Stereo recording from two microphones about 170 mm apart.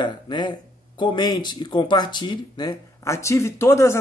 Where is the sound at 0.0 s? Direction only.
25° left (ahead or behind).